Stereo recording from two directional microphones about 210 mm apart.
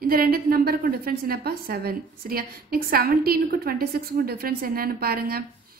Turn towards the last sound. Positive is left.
turn(degrees=-45)  # may be behind; listen again after turning